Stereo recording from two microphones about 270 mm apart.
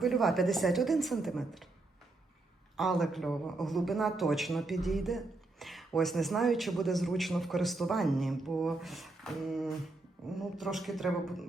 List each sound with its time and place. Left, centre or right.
0.0 s a man's voice: centre
2.7 s a man's voice: centre